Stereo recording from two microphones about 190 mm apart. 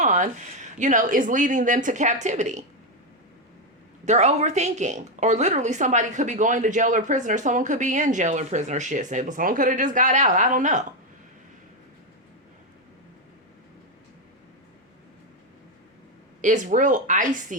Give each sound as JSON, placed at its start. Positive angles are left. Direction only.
{"t": 0.0, "sound": "speech", "side_deg": -40}
{"t": 4.0, "sound": "speech", "side_deg": -35}
{"t": 16.4, "sound": "speech", "side_deg": -40}